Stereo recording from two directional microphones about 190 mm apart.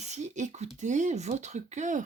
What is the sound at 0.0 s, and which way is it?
Speech, 35° right (ahead or behind).